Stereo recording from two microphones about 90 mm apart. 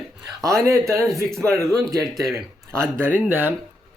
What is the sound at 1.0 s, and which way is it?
Speech, 5° left (ahead or behind).